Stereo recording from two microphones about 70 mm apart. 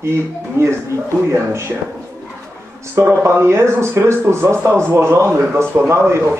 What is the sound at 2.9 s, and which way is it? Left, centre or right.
A man's voice, right.